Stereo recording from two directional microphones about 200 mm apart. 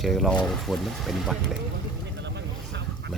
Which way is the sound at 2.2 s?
60° right (ahead or behind).